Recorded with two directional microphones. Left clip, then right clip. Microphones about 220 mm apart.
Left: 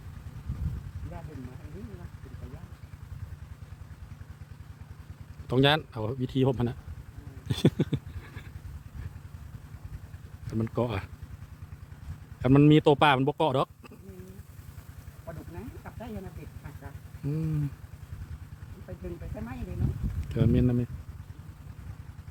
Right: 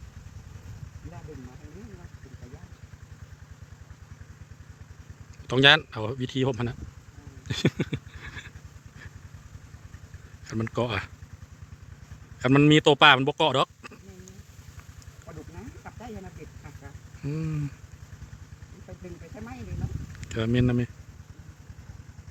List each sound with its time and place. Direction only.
5.5 s speech: centre (ahead or behind)
7.4 s a sound: 10° left (ahead or behind)
10.5 s speech: centre (ahead or behind)
12.4 s speech: centre (ahead or behind)
17.2 s a sound: centre (ahead or behind)
20.2 s speech: centre (ahead or behind)